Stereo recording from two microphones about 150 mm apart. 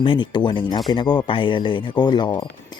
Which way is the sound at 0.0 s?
35° left (ahead or behind).